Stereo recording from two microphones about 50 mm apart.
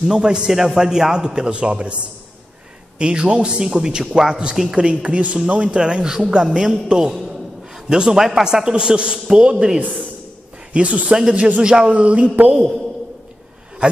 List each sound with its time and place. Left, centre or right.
0.1 s a man's voice: centre